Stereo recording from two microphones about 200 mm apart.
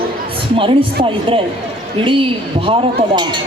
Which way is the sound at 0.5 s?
25° right (ahead or behind).